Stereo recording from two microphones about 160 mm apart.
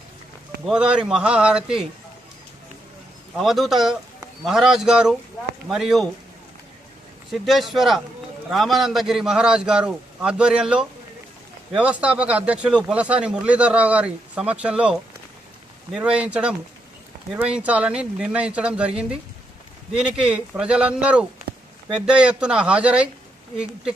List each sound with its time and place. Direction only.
0.7 s a man's voice: 5° right (ahead or behind)
3.3 s a man's voice: centre (ahead or behind)
7.3 s a man's voice: centre (ahead or behind)
21.5 s a sound: 90° right
21.9 s speech: 5° right (ahead or behind)